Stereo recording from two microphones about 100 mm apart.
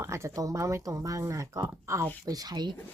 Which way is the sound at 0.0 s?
30° right (ahead or behind).